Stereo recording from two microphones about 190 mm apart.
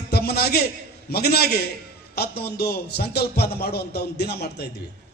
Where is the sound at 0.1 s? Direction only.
55° left (ahead or behind).